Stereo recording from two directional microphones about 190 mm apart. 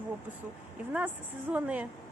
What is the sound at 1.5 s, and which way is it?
Speech, 5° right (ahead or behind).